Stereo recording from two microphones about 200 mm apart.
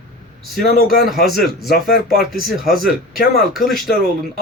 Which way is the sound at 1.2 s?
Centre (ahead or behind).